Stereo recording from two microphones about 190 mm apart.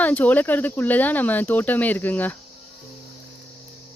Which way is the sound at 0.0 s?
10° left (ahead or behind).